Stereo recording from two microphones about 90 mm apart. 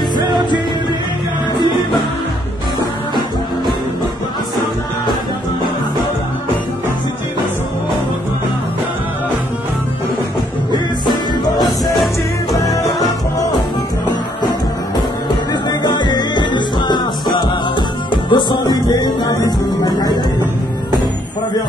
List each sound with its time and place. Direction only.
11.1 s music: 50° left (ahead or behind)
15.8 s music: 55° left (ahead or behind)